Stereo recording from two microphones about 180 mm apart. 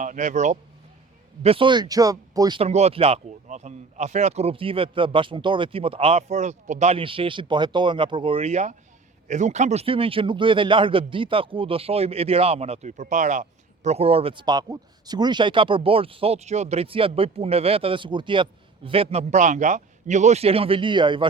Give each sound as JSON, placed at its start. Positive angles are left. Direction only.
{"t": 0.0, "sound": "speech", "side_deg": -45}
{"t": 1.4, "sound": "speech", "side_deg": -30}
{"t": 2.6, "sound": "a man's voice", "side_deg": -35}